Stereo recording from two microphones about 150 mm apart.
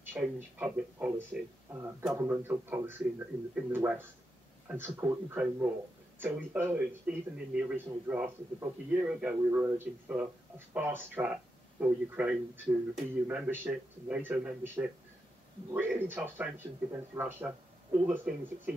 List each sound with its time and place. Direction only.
0.0 s speech: 15° right (ahead or behind)